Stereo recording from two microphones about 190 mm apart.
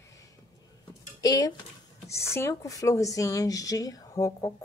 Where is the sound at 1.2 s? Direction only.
20° left (ahead or behind).